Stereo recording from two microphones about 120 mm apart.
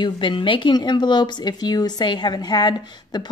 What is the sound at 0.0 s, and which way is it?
A woman's voice, 45° left (ahead or behind).